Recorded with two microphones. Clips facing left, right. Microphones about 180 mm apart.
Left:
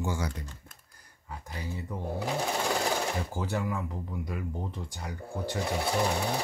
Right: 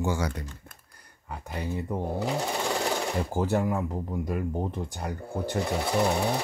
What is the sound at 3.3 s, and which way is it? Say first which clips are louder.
Speech: right 6 dB; 45° right (ahead or behind).